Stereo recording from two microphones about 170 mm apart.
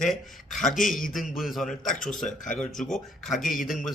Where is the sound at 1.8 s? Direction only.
50° left (ahead or behind).